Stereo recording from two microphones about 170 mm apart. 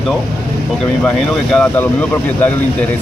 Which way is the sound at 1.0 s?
5° left (ahead or behind).